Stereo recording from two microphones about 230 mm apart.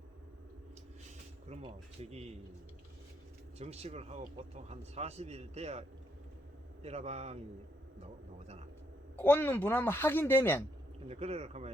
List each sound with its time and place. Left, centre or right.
1.5 s speech: right
3.6 s speech: right
6.8 s speech: right
9.1 s a woman's voice: centre
11.1 s speech: right